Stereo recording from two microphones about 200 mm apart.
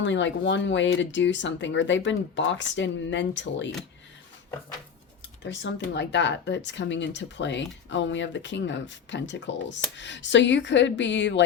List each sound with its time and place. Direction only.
0.0 s speech: 65° left (ahead or behind)
5.4 s speech: 60° left (ahead or behind)